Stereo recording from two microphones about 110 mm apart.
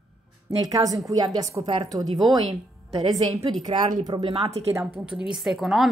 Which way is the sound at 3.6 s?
40° right (ahead or behind).